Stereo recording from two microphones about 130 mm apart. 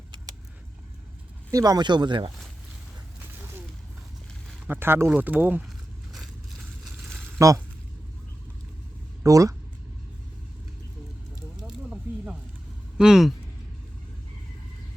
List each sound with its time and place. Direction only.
1.5 s speech: 25° right (ahead or behind)
3.3 s a sound: 15° right (ahead or behind)
4.6 s speech: 15° right (ahead or behind)
6.1 s crushing: centre (ahead or behind)
7.3 s a sound: 25° right (ahead or behind)
9.2 s speech: 25° right (ahead or behind)
11.9 s snake: 10° right (ahead or behind)
13.0 s speech: 5° right (ahead or behind)